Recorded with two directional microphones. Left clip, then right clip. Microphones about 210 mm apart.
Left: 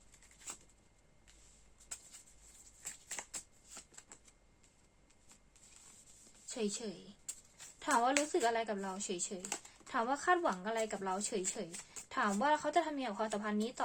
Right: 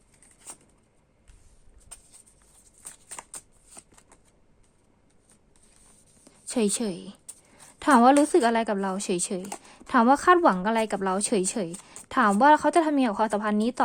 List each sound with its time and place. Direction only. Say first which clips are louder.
3.1 s shuffling cards: right 4 dB; 15° right (ahead or behind)
6.5 s a woman's voice: right 13 dB; 55° right (ahead or behind)